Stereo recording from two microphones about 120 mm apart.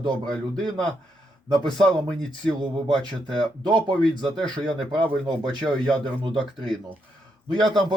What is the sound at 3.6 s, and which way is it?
Speech, 40° right (ahead or behind).